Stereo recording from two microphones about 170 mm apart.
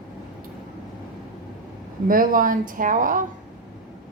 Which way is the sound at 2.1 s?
55° right (ahead or behind).